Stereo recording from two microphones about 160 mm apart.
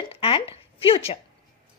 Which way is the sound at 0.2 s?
30° left (ahead or behind).